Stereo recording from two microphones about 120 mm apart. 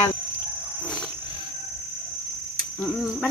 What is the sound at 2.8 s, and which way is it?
Speech, centre (ahead or behind).